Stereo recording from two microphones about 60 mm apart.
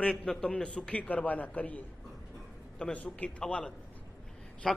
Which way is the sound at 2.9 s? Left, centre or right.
Left.